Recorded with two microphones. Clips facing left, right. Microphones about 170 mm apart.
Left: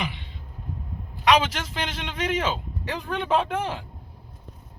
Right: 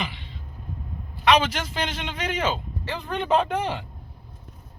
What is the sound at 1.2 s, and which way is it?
A man's voice, 5° left (ahead or behind).